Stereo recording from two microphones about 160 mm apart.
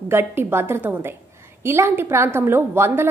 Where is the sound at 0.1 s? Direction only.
15° right (ahead or behind).